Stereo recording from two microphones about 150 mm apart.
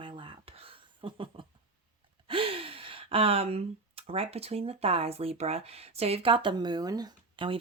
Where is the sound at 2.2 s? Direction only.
35° right (ahead or behind).